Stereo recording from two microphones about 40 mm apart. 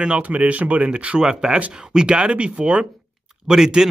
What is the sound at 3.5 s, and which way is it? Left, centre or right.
Speech, centre.